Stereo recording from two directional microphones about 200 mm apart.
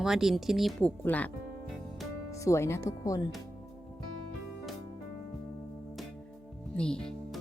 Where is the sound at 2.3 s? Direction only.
15° left (ahead or behind).